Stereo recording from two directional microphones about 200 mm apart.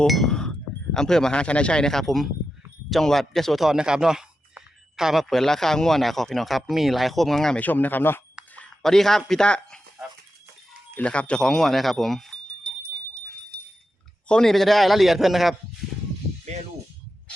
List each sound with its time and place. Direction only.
0.0 s chink: centre (ahead or behind)
0.9 s speech: 5° left (ahead or behind)
10.9 s speech: 5° left (ahead or behind)
14.3 s speech: 5° left (ahead or behind)